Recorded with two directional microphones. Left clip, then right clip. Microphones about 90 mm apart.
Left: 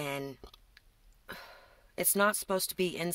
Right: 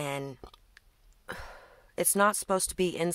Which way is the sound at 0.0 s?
40° right (ahead or behind).